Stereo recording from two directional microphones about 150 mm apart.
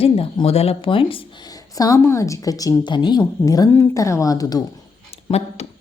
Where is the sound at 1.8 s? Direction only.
20° left (ahead or behind).